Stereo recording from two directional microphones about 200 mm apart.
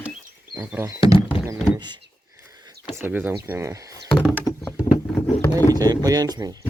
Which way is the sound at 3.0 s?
10° right (ahead or behind).